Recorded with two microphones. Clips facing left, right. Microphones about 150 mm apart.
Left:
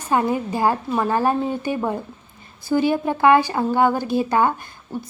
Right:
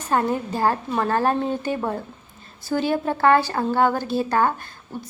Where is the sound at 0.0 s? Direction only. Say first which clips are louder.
Left 2 dB; 10° left (ahead or behind).